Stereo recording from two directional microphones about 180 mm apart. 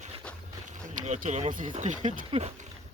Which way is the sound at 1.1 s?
40° right (ahead or behind).